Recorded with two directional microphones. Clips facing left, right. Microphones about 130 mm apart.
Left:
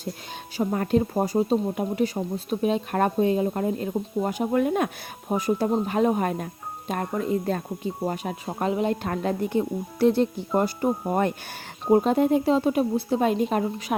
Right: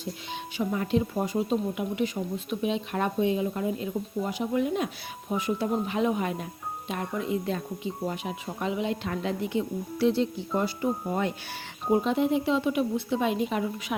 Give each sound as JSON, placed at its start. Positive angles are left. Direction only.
{"t": 0.5, "sound": "speech", "side_deg": 45}
{"t": 5.3, "sound": "a woman's voice", "side_deg": 40}